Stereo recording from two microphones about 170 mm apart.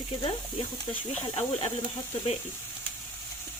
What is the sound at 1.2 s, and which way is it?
Speech, 35° left (ahead or behind).